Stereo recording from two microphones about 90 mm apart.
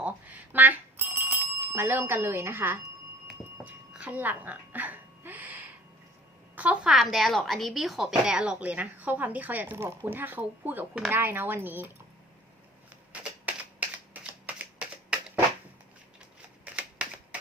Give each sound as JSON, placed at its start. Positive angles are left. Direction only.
{"t": 0.0, "sound": "bicycle bell", "side_deg": -20}
{"t": 3.6, "sound": "a sound", "side_deg": -15}
{"t": 6.6, "sound": "a woman's voice", "side_deg": -15}
{"t": 6.9, "sound": "a woman's voice", "side_deg": 0}
{"t": 13.5, "sound": "typing", "side_deg": -15}
{"t": 16.6, "sound": "typewriter", "side_deg": -15}